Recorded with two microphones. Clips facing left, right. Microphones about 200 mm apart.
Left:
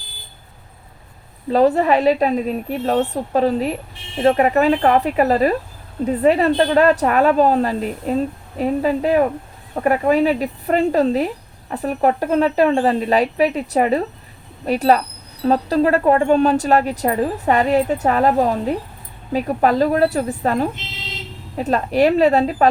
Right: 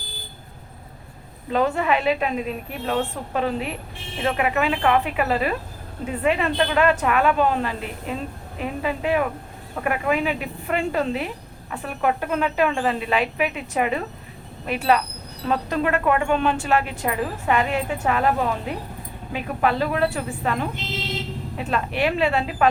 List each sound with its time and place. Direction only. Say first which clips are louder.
1.5 s a woman's voice: left 7 dB; 35° left (ahead or behind)